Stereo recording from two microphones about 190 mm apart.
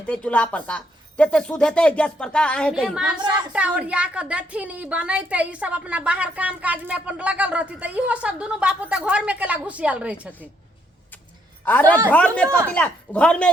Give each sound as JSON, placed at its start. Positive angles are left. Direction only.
{"t": 0.1, "sound": "speech", "side_deg": 5}
{"t": 3.2, "sound": "a woman's voice", "side_deg": -20}
{"t": 3.5, "sound": "a woman's voice", "side_deg": -5}
{"t": 11.6, "sound": "a woman's voice", "side_deg": 10}